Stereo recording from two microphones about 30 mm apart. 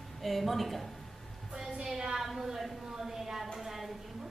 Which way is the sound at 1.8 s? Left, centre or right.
Centre.